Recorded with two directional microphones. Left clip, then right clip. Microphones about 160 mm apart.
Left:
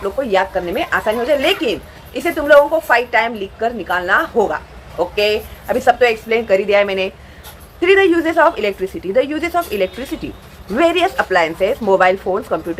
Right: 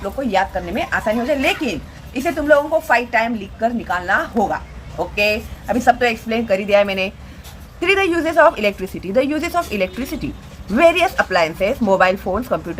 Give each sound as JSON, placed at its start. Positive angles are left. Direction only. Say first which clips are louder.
{"t": 0.0, "sound": "a woman's voice", "louder": "left 2 dB", "side_deg": -10}